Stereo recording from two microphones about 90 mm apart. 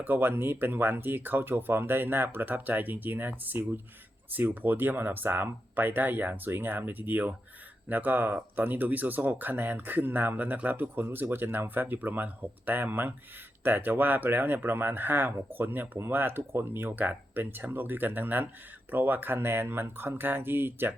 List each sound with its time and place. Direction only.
0.0 s speech: 25° right (ahead or behind)